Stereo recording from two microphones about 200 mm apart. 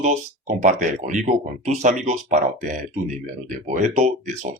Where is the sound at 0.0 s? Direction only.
35° right (ahead or behind).